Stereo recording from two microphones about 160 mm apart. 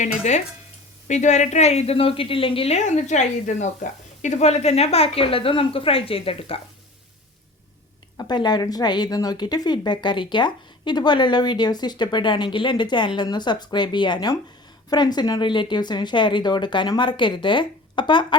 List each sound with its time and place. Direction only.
1.0 s a woman's voice: 50° left (ahead or behind)
8.2 s speech: 25° left (ahead or behind)